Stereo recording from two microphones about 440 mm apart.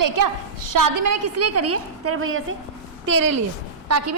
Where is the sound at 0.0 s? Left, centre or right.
Right.